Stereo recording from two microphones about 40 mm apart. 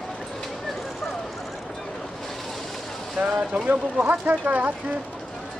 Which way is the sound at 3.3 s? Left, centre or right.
Right.